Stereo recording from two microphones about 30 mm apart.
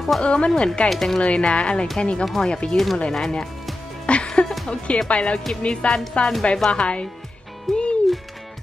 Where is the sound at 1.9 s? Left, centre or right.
Left.